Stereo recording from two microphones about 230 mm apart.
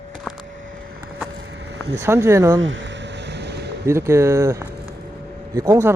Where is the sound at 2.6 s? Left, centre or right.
Right.